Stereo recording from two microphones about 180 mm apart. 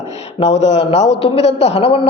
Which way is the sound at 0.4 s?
80° left.